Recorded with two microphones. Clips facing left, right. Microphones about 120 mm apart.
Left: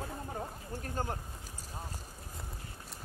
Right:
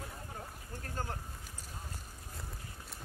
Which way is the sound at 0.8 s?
20° left (ahead or behind).